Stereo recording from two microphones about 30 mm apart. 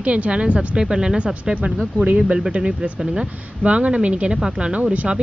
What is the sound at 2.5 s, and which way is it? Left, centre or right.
A woman's voice, right.